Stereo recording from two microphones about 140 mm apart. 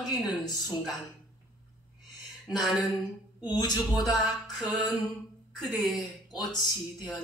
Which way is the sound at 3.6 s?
25° left (ahead or behind).